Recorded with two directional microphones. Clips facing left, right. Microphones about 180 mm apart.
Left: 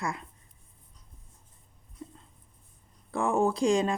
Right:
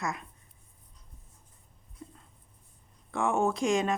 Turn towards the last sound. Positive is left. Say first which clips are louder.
# left 2 dB
turn(degrees=30)  # may be behind; listen again after turning